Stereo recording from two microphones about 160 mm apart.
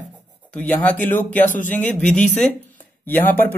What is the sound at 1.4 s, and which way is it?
Speech, 55° left (ahead or behind).